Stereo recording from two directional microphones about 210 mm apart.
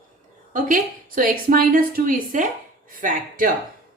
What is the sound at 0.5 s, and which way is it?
A woman's voice, 40° right (ahead or behind).